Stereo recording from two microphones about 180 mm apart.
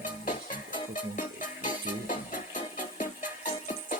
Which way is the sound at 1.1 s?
45° left (ahead or behind).